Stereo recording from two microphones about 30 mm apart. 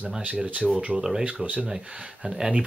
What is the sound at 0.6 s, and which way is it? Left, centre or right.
Speech, centre.